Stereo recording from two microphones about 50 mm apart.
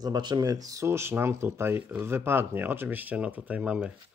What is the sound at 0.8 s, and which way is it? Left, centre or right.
Speech, right.